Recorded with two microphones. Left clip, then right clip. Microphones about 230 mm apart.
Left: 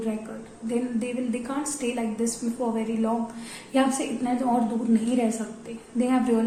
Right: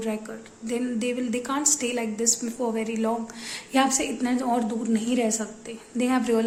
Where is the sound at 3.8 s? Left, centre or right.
Right.